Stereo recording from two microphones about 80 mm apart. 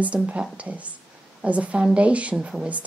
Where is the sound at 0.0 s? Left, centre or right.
Centre.